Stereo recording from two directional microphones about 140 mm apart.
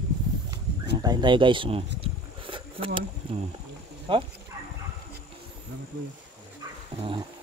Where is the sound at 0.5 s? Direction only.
30° right (ahead or behind).